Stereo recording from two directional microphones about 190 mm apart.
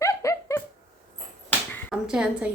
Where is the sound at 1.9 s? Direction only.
5° right (ahead or behind).